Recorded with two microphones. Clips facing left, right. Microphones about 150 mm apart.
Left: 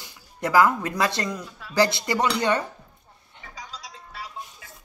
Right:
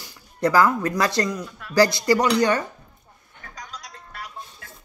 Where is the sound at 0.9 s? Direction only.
25° left (ahead or behind).